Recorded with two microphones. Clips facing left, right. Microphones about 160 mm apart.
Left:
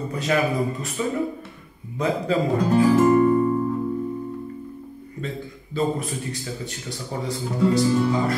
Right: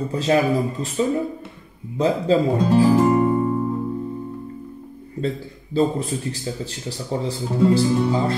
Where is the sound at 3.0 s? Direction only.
25° right (ahead or behind).